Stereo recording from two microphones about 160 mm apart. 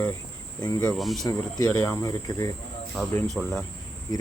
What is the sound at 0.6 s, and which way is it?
Speech, 25° left (ahead or behind).